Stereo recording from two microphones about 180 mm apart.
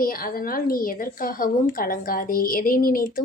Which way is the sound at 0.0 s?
55° left (ahead or behind).